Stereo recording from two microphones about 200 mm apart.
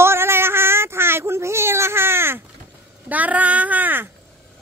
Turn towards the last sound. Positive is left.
turn(degrees=-10)  # may be behind; listen again after turning